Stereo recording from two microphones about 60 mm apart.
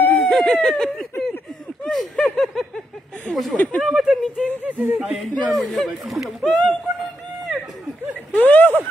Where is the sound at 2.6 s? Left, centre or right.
Centre.